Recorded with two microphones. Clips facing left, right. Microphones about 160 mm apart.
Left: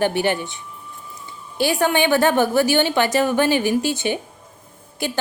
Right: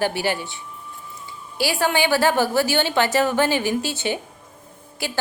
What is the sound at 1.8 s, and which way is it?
A woman's voice, 20° left (ahead or behind).